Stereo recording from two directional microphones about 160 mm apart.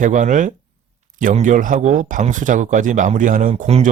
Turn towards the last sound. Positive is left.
turn(degrees=-45)  # may be behind; listen again after turning